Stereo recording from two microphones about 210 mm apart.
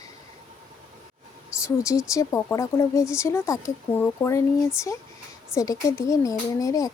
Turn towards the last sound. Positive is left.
turn(degrees=15)  # may be behind; listen again after turning